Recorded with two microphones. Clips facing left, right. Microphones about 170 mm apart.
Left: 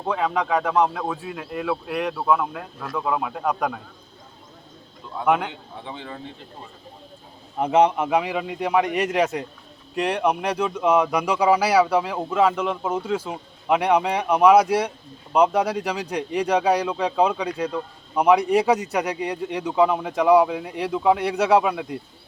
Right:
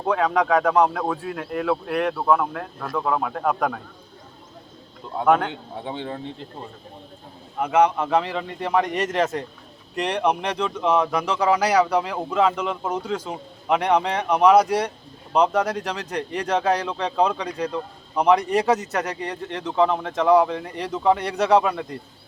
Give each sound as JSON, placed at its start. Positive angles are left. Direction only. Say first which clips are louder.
{"t": 0.1, "sound": "speech", "louder": "right 3 dB", "side_deg": 5}
{"t": 5.2, "sound": "speech", "louder": "right 2 dB", "side_deg": 5}
{"t": 5.8, "sound": "speech", "louder": "right 5 dB", "side_deg": -30}
{"t": 7.6, "sound": "speech", "louder": "left 1 dB", "side_deg": 25}